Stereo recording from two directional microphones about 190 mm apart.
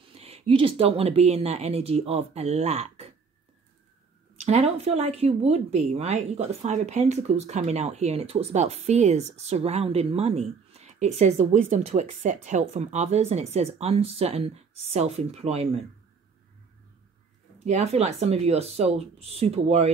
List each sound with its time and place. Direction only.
0.0 s a woman's voice: 30° right (ahead or behind)
4.4 s a woman's voice: 35° right (ahead or behind)
17.6 s a woman's voice: 35° right (ahead or behind)